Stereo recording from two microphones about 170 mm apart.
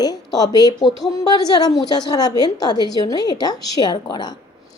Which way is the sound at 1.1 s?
25° left (ahead or behind).